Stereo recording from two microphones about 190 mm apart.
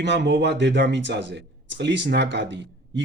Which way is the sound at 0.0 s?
65° right (ahead or behind).